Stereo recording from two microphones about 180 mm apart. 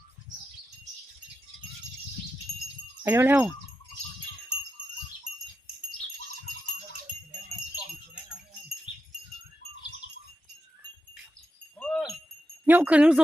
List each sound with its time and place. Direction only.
3.0 s speech: 10° right (ahead or behind)
11.8 s wind chime: 5° left (ahead or behind)
12.6 s speech: 10° right (ahead or behind)